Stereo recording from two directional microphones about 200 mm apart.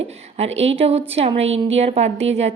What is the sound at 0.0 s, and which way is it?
A woman's voice, 30° right (ahead or behind).